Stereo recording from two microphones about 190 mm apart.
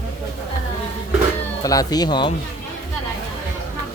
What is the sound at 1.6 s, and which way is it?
Speech, 20° left (ahead or behind).